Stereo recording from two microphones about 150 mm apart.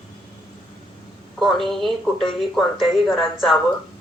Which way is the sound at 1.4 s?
Centre (ahead or behind).